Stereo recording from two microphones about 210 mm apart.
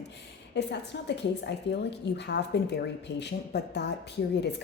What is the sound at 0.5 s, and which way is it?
A woman's voice, 55° left (ahead or behind).